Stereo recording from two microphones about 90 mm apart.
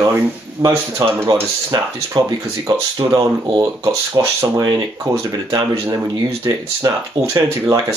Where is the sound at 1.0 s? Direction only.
50° right (ahead or behind).